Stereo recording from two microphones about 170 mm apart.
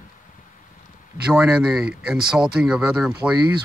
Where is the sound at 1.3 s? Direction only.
5° right (ahead or behind).